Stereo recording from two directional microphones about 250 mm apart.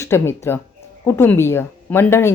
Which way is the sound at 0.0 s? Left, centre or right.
Centre.